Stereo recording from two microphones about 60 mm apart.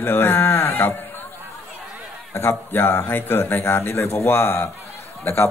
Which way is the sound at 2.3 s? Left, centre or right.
Left.